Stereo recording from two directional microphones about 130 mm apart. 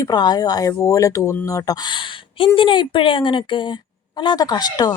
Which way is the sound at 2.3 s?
40° left (ahead or behind).